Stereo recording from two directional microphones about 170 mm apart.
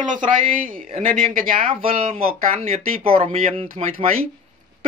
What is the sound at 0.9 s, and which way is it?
Speech, 50° right (ahead or behind).